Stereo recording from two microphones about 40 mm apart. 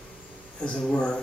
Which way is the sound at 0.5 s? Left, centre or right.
Left.